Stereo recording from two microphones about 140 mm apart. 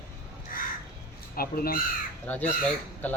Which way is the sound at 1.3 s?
90° left.